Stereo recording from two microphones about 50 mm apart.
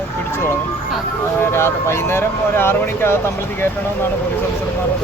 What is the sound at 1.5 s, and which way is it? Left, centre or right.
Speech, left.